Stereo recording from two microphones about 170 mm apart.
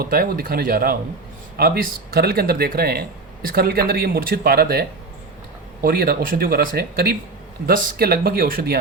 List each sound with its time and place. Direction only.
0.0 s speech: 60° right (ahead or behind)